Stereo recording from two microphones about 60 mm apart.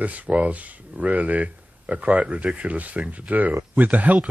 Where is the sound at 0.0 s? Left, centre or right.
Right.